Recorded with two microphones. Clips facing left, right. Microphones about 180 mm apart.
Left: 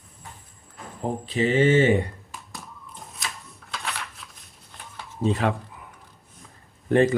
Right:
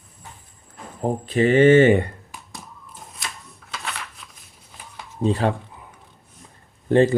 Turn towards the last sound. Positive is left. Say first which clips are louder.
# right 3 dB
turn(degrees=-30)  # may be behind; listen again after turning